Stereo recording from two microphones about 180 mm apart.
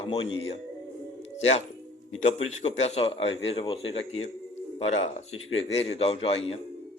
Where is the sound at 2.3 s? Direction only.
35° left (ahead or behind).